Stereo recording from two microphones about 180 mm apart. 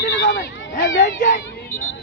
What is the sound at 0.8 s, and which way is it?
Speech, 85° left.